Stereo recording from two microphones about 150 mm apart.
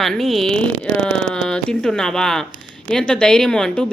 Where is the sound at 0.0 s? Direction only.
Centre (ahead or behind).